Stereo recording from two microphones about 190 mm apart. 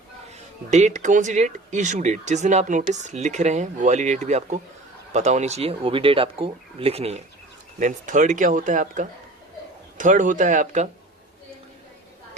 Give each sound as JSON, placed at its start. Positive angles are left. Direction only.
{"t": 0.3, "sound": "speech", "side_deg": -35}
{"t": 7.8, "sound": "speech", "side_deg": -40}